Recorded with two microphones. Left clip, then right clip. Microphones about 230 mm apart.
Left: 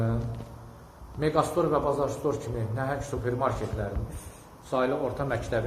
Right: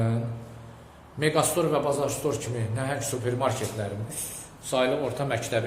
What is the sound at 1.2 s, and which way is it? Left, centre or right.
Speech, right.